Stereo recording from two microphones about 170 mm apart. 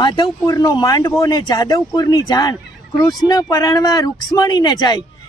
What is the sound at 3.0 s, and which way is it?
Speech, centre (ahead or behind).